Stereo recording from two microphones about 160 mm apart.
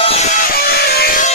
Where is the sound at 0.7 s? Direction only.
75° left (ahead or behind).